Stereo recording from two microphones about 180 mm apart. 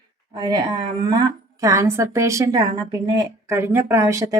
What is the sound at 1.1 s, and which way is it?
Speech, 20° right (ahead or behind).